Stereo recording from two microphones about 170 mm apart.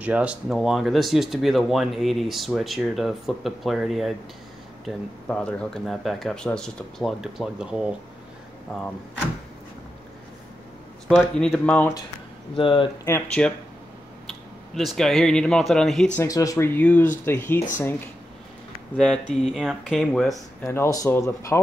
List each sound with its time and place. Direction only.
0.0 s speech: 5° right (ahead or behind)
11.1 s speech: 5° left (ahead or behind)
12.5 s speech: 30° left (ahead or behind)
13.0 s speech: 10° left (ahead or behind)
14.7 s speech: centre (ahead or behind)
16.2 s speech: 20° left (ahead or behind)
19.3 s speech: 5° left (ahead or behind)
20.7 s speech: 20° left (ahead or behind)